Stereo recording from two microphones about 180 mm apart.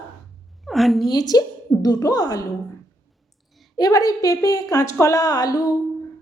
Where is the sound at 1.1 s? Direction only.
20° left (ahead or behind).